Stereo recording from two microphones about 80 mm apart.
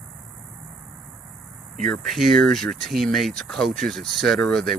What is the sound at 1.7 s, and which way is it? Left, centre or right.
Speech, centre.